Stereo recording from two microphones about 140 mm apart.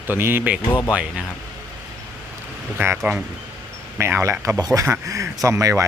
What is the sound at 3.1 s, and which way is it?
Speech, 15° right (ahead or behind).